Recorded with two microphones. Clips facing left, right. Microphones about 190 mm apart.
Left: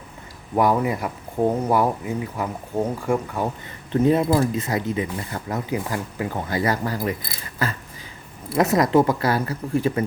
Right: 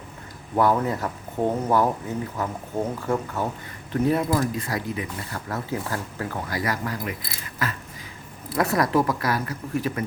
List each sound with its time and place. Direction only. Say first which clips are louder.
0.5 s speech: left 2 dB; 10° left (ahead or behind)
3.9 s speech: left 4 dB; 25° left (ahead or behind)
8.5 s speech: left 4 dB; 20° left (ahead or behind)